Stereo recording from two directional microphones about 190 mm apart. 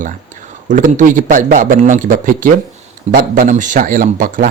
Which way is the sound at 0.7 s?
40° right (ahead or behind).